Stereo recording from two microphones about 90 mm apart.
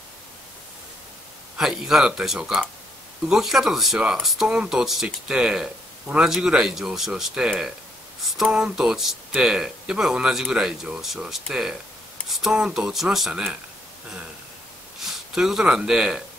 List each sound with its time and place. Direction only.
1.6 s speech: 5° right (ahead or behind)
15.0 s speech: 5° right (ahead or behind)